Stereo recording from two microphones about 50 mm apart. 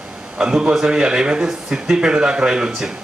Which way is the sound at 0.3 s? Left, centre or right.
Centre.